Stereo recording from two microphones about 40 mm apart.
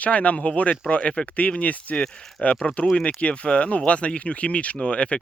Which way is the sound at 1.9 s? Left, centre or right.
Left.